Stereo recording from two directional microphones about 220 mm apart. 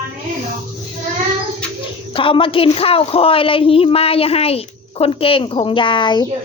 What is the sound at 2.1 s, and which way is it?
Speech, 25° left (ahead or behind).